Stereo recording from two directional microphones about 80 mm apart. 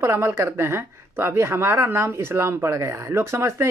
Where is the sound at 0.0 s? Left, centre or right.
Right.